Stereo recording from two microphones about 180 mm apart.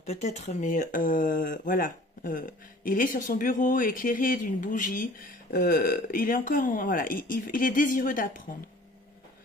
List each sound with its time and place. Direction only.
0.0 s speech: 35° left (ahead or behind)